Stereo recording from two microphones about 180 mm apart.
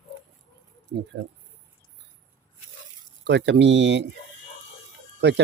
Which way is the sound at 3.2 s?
70° right (ahead or behind).